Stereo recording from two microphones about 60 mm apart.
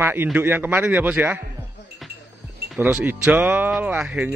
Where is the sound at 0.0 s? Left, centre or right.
Right.